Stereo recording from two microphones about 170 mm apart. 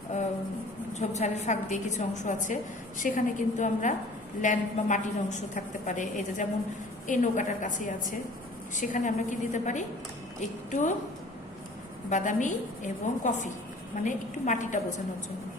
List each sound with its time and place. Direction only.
0.9 s a woman's voice: 40° left (ahead or behind)
12.1 s a woman's voice: 45° left (ahead or behind)